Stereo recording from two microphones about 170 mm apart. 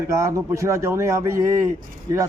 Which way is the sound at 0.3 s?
20° right (ahead or behind).